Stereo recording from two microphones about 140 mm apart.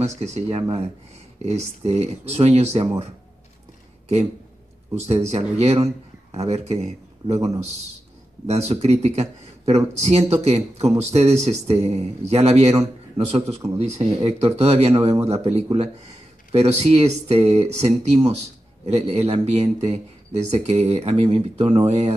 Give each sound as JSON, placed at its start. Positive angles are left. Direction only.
{"t": 0.0, "sound": "speech", "side_deg": -50}
{"t": 4.9, "sound": "speech", "side_deg": -50}
{"t": 7.3, "sound": "a man's voice", "side_deg": -25}
{"t": 8.5, "sound": "speech", "side_deg": -50}